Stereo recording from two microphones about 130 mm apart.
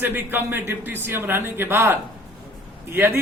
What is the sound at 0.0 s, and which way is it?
A man's voice, 15° right (ahead or behind).